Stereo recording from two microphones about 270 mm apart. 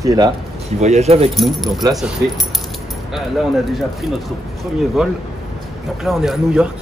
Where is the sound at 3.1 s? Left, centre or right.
Centre.